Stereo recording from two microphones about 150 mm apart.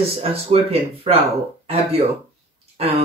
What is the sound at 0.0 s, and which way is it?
Speech, 40° right (ahead or behind).